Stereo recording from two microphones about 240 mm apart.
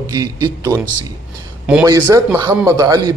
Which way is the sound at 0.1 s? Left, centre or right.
Centre.